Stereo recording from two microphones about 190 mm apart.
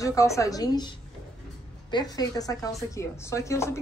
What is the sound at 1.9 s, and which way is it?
A woman's voice, 20° left (ahead or behind).